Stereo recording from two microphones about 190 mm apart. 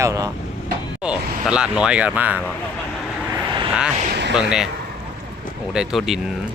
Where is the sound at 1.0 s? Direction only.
5° right (ahead or behind).